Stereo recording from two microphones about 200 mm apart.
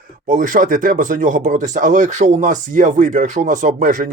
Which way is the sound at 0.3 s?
40° right (ahead or behind).